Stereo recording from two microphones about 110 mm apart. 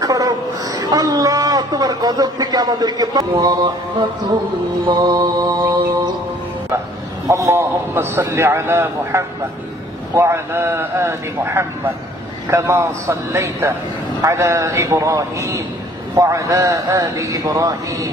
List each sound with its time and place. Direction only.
0.0 s a woman's voice: 30° right (ahead or behind)
4.8 s mantra: 40° right (ahead or behind)
7.2 s a man's voice: 30° right (ahead or behind)